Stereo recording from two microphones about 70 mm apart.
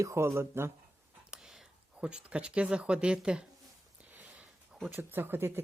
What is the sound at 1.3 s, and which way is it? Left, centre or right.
Speech, centre.